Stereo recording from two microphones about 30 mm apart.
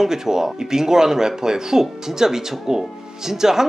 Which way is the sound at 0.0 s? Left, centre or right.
Centre.